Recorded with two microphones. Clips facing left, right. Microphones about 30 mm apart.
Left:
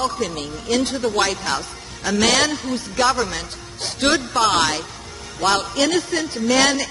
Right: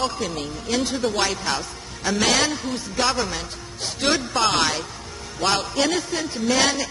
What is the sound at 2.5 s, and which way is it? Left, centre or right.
A man's voice, centre.